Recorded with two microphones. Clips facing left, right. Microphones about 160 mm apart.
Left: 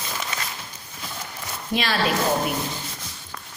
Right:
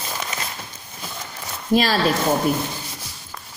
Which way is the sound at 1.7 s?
40° right (ahead or behind).